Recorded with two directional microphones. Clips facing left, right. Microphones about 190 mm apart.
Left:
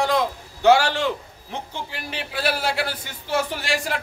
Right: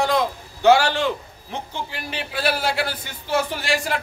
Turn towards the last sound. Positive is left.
turn(degrees=0)  # may be behind; listen again after turning